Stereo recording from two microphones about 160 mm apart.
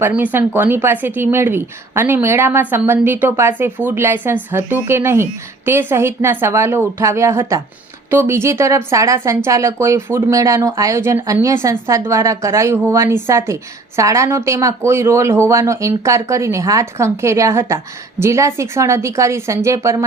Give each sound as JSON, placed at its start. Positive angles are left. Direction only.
{"t": 0.0, "sound": "a woman's voice", "side_deg": -10}